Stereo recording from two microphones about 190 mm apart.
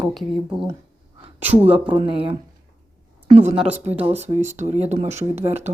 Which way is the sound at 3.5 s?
5° right (ahead or behind).